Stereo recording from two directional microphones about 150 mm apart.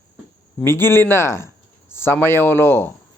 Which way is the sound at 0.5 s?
15° left (ahead or behind).